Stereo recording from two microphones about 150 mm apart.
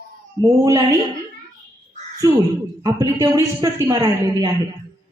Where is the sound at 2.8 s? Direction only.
20° right (ahead or behind).